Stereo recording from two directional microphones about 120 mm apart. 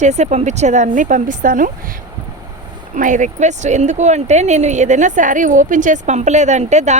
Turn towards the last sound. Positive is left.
turn(degrees=-75)  # may be behind; listen again after turning